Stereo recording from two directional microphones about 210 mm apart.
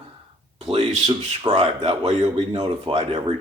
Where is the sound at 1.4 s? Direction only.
25° right (ahead or behind).